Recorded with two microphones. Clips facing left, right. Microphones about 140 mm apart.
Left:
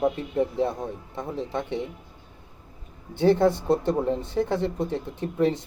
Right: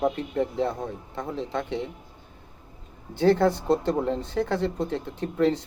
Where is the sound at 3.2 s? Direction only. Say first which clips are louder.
Left 1 dB; 20° left (ahead or behind).